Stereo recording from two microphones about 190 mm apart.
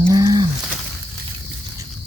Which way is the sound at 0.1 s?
20° right (ahead or behind).